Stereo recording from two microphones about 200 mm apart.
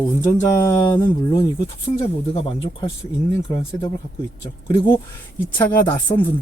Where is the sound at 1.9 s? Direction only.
30° left (ahead or behind).